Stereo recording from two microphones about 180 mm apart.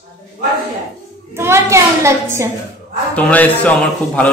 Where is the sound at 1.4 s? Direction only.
15° right (ahead or behind).